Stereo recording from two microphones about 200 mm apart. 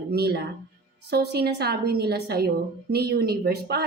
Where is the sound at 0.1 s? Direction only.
50° right (ahead or behind).